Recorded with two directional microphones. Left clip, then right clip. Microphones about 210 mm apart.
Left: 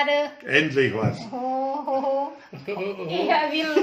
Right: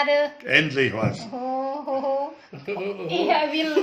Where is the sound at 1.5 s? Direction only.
Centre (ahead or behind).